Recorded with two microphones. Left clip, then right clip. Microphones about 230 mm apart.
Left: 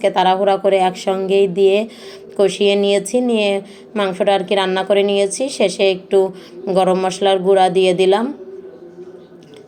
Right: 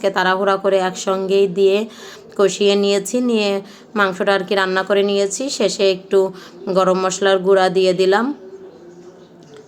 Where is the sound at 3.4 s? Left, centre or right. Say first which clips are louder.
Left 2 dB; right.